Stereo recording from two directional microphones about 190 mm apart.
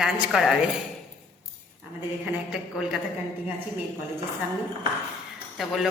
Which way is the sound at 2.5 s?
Centre (ahead or behind).